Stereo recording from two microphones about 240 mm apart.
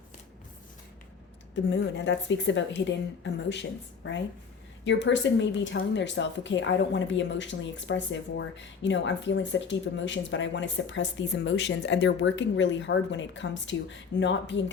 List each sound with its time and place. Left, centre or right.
1.7 s speech: left